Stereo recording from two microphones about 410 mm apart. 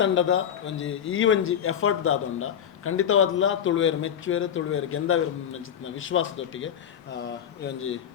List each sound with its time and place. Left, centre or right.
0.0 s speech: left